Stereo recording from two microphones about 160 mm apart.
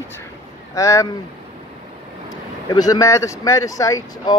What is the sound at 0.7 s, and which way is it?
Speech, 20° left (ahead or behind).